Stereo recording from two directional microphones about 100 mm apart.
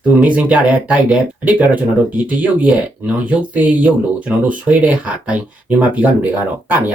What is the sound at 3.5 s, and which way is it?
Speech, 15° right (ahead or behind).